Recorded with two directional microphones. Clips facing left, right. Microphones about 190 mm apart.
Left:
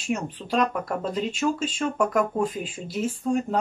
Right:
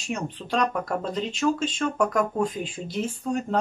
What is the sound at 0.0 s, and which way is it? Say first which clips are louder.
Speech: left 2 dB; 5° left (ahead or behind).